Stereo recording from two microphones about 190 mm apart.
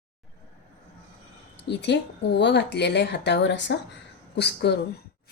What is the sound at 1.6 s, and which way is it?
Speech, 65° left (ahead or behind).